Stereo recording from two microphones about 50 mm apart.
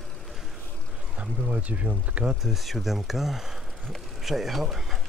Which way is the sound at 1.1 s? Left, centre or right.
Right.